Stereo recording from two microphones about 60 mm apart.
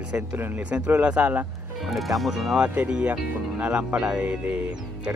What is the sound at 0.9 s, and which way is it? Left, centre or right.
Speech, right.